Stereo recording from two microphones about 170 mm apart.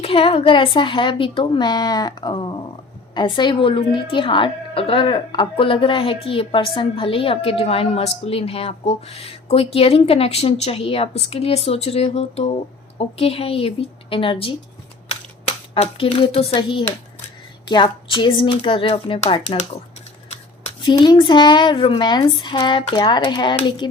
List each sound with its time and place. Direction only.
0.0 s a woman's voice: 35° left (ahead or behind)
15.1 s camera: 35° left (ahead or behind)
17.7 s a woman's voice: 25° left (ahead or behind)
20.8 s a woman's voice: 25° left (ahead or behind)